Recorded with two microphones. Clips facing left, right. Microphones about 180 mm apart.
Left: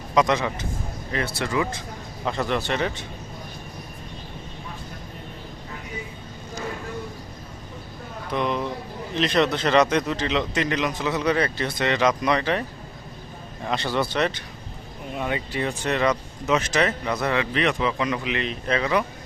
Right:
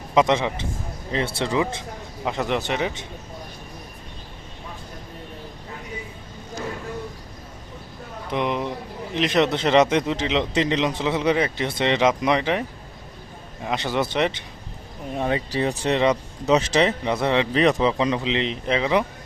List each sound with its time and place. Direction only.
0.1 s a man's voice: 25° right (ahead or behind)
8.3 s speech: 20° right (ahead or behind)
13.7 s speech: 15° right (ahead or behind)
15.1 s speech: 35° right (ahead or behind)